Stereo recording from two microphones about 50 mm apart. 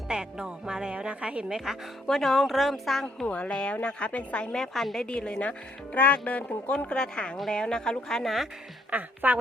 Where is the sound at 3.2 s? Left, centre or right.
Left.